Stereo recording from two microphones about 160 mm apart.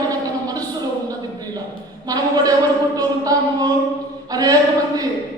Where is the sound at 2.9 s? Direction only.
25° right (ahead or behind).